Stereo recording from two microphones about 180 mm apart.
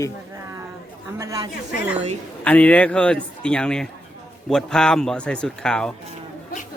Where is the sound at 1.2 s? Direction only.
20° right (ahead or behind).